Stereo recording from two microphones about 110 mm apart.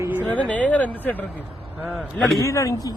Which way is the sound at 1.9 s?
Centre (ahead or behind).